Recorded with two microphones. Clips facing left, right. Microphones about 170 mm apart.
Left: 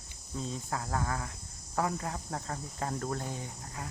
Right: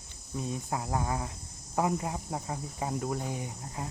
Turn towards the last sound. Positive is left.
turn(degrees=-15)  # may be behind; listen again after turning